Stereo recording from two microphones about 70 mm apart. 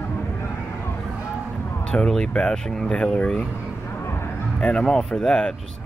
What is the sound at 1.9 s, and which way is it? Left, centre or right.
Speech, centre.